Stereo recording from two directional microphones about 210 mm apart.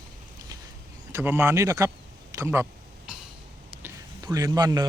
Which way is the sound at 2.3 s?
10° right (ahead or behind).